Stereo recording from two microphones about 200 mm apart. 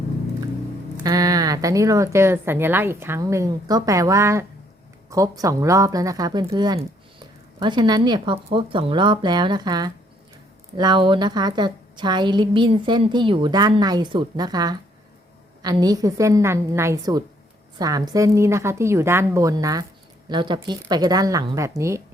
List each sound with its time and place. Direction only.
1.0 s a woman's voice: 20° right (ahead or behind)